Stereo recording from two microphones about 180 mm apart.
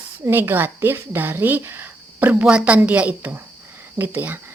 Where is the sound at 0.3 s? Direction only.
10° right (ahead or behind).